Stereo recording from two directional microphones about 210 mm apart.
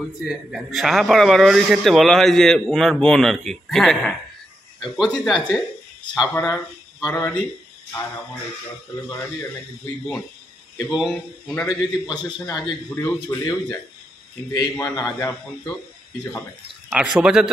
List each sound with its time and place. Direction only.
0.2 s a man's voice: centre (ahead or behind)
6.3 s speech: 15° left (ahead or behind)
9.1 s a man's voice: 10° left (ahead or behind)
10.9 s a man's voice: 5° right (ahead or behind)
12.1 s a man's voice: 20° left (ahead or behind)
16.9 s a man's voice: 5° right (ahead or behind)